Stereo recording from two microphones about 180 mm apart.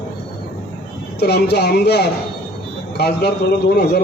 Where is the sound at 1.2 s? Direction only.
65° left (ahead or behind).